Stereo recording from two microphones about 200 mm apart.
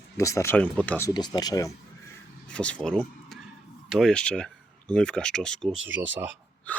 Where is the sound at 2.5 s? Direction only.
5° left (ahead or behind).